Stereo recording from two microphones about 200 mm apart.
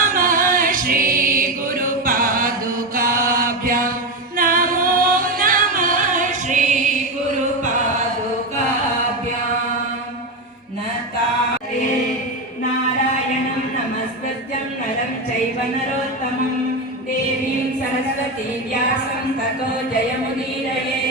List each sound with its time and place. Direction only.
0.0 s music: 45° right (ahead or behind)
2.9 s chant: 45° right (ahead or behind)
4.4 s music: 45° right (ahead or behind)